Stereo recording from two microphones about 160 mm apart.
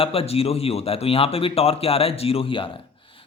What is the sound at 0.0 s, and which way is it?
Speech, 35° left (ahead or behind).